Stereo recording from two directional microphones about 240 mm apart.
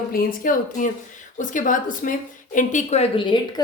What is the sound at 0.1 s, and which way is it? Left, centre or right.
A woman's voice, left.